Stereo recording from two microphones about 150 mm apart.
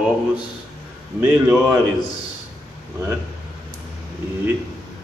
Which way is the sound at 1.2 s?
15° right (ahead or behind).